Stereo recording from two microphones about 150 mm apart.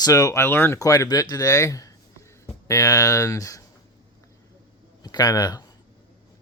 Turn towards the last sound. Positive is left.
turn(degrees=25)  # may be behind; listen again after turning